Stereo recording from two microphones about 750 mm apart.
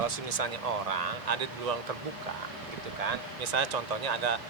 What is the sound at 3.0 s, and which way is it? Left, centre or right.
Speech, right.